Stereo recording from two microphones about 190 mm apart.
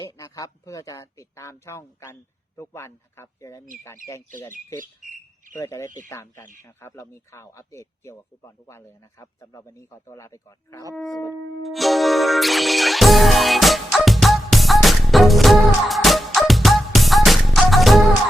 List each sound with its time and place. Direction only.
0.0 s speech: 20° left (ahead or behind)
4.5 s bird: 45° right (ahead or behind)
5.5 s speech: 15° left (ahead or behind)
10.9 s shofar: centre (ahead or behind)
11.6 s music: centre (ahead or behind)